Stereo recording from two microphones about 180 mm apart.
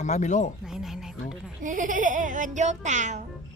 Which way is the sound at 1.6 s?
45° right (ahead or behind).